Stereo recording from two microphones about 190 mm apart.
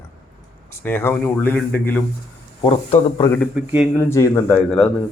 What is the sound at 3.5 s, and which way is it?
Speech, 5° right (ahead or behind).